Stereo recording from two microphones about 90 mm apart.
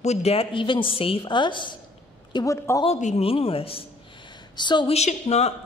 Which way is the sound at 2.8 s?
90° left.